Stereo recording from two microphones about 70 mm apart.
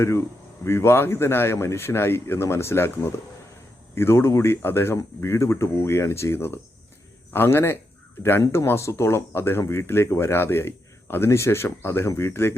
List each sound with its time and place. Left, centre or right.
0.0 s speech: left